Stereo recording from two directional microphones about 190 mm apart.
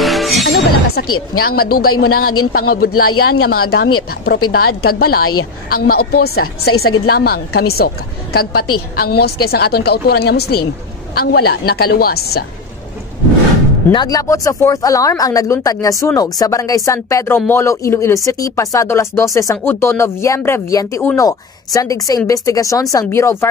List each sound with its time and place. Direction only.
0.0 s music: centre (ahead or behind)
1.0 s a woman's voice: 90° left
1.4 s a man's voice: 55° left (ahead or behind)
13.9 s speech: 20° left (ahead or behind)